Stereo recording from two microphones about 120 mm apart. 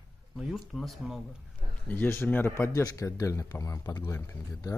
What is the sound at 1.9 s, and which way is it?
Speech, 15° left (ahead or behind).